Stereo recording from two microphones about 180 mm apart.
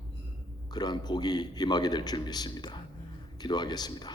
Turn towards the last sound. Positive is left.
turn(degrees=20)  # may be behind; listen again after turning